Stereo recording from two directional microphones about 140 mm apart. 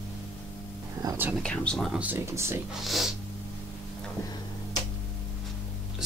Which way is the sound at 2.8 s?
Centre (ahead or behind).